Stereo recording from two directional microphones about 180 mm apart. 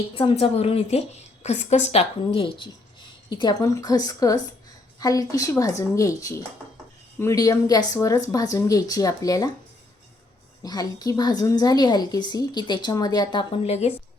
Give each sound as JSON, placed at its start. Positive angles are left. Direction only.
{"t": 0.1, "sound": "a woman's voice", "side_deg": 30}
{"t": 10.6, "sound": "a woman's voice", "side_deg": 20}